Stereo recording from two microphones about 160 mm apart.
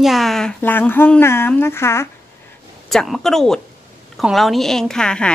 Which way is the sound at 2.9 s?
Centre (ahead or behind).